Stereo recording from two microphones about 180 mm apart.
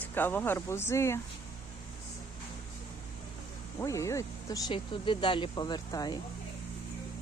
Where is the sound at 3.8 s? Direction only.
15° left (ahead or behind).